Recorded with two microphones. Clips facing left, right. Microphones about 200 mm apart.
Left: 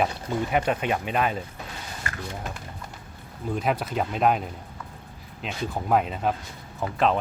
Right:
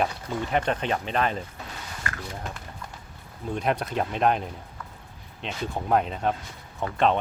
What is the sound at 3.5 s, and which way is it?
Speech, centre (ahead or behind).